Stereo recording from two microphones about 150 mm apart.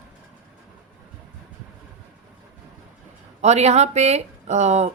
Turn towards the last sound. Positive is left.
turn(degrees=-50)  # may be behind; listen again after turning